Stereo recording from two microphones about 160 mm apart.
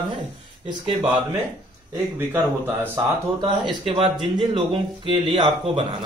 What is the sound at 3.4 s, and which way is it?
A man's voice, 30° right (ahead or behind).